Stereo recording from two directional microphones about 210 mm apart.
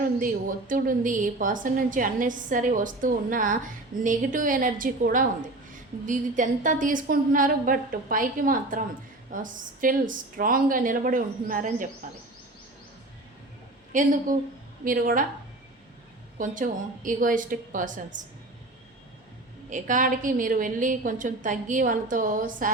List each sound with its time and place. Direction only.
0.2 s a woman's voice: 40° right (ahead or behind)
13.9 s a woman's voice: 40° right (ahead or behind)
16.4 s a woman's voice: 40° right (ahead or behind)
19.7 s a woman's voice: 40° right (ahead or behind)